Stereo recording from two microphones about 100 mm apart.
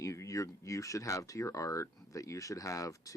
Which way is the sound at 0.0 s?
30° left (ahead or behind).